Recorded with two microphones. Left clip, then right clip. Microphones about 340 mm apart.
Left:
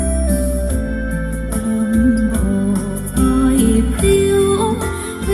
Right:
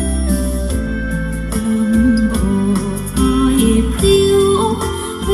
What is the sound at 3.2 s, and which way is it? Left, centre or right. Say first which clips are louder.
Music: right 1 dB; centre.